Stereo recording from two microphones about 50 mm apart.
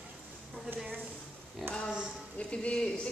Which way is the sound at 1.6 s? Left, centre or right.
Centre.